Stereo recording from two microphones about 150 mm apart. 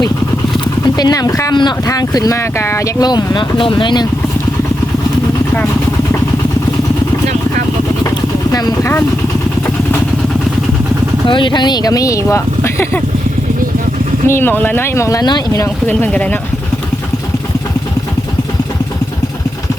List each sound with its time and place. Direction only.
0.9 s speech: 25° left (ahead or behind)
8.1 s vehicle: 25° left (ahead or behind)
11.3 s speech: 35° left (ahead or behind); by 13.0 s 15° left (ahead or behind)
14.3 s speech: 15° left (ahead or behind)